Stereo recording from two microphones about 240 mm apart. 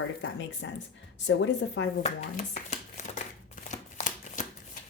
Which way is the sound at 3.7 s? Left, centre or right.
Left.